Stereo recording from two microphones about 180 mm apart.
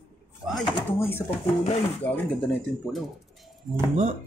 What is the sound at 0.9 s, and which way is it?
Speech, 15° left (ahead or behind).